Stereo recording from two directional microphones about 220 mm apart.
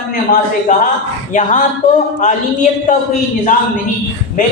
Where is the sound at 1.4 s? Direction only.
35° left (ahead or behind).